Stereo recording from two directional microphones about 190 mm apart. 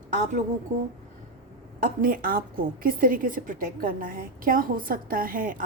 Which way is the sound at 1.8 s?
50° right (ahead or behind).